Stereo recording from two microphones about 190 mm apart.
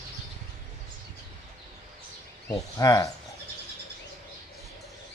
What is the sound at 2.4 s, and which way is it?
Speech, 20° left (ahead or behind).